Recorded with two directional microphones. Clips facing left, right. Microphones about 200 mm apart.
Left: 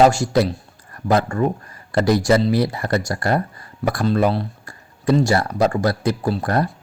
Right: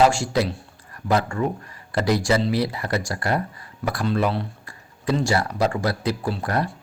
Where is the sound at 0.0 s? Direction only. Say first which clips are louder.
Left 4 dB; 40° left (ahead or behind).